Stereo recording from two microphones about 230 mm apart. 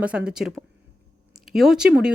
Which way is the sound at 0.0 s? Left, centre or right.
Centre.